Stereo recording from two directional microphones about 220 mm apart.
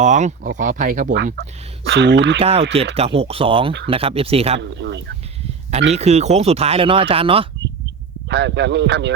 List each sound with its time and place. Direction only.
0.0 s speech: 35° right (ahead or behind)
1.1 s speech: 50° right (ahead or behind)
2.4 s speech: 25° right (ahead or behind)
4.7 s speech: 55° right (ahead or behind)
5.9 s speech: 30° right (ahead or behind)
8.3 s speech: 50° right (ahead or behind)